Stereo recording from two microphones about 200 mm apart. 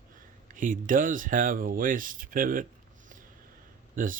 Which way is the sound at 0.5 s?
40° right (ahead or behind).